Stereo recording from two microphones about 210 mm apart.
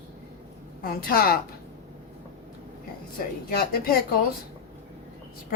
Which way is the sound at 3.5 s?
45° left (ahead or behind).